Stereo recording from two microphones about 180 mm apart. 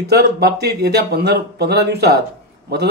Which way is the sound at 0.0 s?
60° right (ahead or behind).